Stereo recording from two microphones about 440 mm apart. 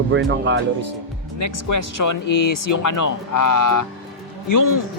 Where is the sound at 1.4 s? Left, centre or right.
Left.